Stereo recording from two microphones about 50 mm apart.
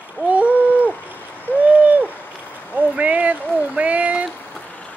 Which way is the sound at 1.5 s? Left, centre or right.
Left.